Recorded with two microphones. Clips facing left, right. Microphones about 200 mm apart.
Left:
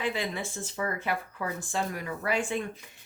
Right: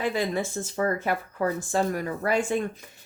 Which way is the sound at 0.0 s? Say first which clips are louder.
Right 5 dB; 45° right (ahead or behind).